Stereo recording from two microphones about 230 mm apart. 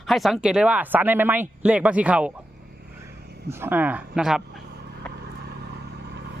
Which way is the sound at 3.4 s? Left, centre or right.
Centre.